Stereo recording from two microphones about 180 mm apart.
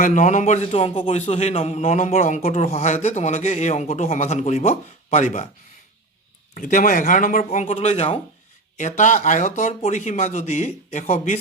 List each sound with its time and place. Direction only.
0.0 s a man's voice: 45° left (ahead or behind)
6.5 s a man's voice: 45° left (ahead or behind)